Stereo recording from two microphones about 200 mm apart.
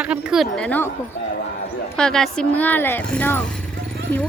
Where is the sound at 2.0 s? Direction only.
5° left (ahead or behind).